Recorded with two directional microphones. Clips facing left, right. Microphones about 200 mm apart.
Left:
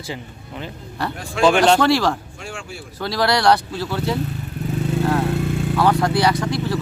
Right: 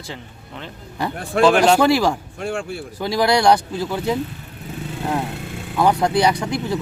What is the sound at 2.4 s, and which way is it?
Speech, 55° right (ahead or behind).